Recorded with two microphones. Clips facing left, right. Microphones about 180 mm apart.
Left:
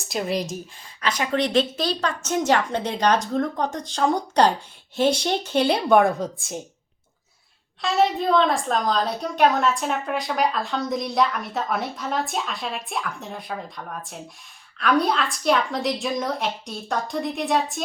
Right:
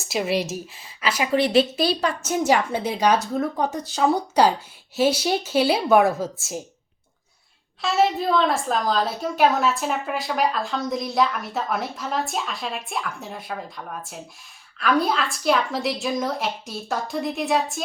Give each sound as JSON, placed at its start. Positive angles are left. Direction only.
{"t": 0.1, "sound": "a woman's voice", "side_deg": -5}
{"t": 7.8, "sound": "a woman's voice", "side_deg": 0}